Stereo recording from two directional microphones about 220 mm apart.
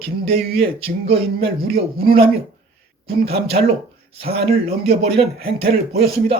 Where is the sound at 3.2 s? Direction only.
25° right (ahead or behind).